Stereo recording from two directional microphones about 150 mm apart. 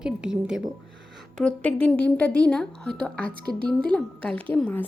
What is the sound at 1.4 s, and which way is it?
A woman's voice, 10° left (ahead or behind).